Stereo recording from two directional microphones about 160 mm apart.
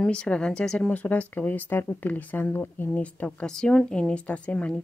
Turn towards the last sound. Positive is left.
turn(degrees=5)  # may be behind; listen again after turning